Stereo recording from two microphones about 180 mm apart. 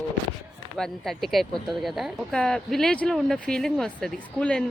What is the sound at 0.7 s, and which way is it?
Speech, centre (ahead or behind).